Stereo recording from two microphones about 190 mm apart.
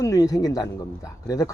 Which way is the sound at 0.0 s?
15° left (ahead or behind).